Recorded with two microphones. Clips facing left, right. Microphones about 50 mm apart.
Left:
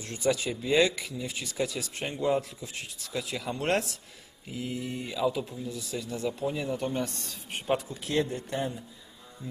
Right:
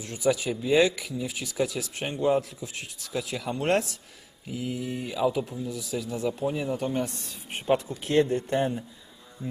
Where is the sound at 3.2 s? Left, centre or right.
Right.